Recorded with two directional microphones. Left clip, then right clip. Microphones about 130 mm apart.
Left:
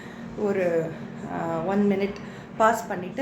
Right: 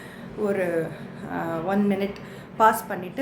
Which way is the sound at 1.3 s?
35° right (ahead or behind).